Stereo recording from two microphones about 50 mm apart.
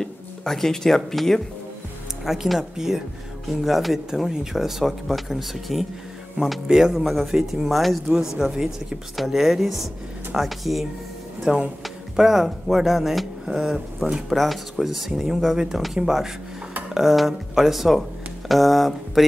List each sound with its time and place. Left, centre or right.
0.0 s speech: centre
2.2 s speech: centre
8.1 s speech: centre
11.5 s speech: right
11.8 s speech: centre